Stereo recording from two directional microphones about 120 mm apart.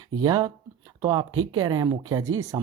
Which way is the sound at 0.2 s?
30° right (ahead or behind).